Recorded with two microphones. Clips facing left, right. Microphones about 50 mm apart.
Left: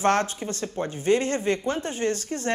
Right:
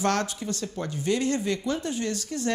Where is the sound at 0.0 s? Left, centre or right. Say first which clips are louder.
Left 4 dB; left.